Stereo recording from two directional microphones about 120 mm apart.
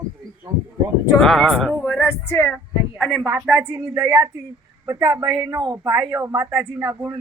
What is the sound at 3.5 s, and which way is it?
Speech, 20° right (ahead or behind).